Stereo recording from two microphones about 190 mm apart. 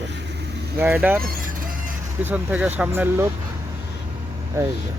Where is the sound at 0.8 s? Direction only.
10° right (ahead or behind).